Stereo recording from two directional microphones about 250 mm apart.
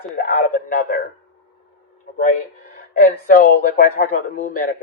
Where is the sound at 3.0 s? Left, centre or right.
Left.